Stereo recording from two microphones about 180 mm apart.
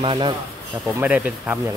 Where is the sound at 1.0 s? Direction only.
10° right (ahead or behind).